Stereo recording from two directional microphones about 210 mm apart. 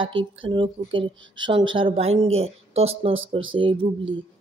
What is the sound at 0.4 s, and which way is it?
Speech, 25° right (ahead or behind).